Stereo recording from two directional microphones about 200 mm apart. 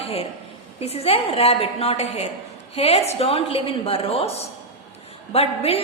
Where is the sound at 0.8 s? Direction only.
30° left (ahead or behind).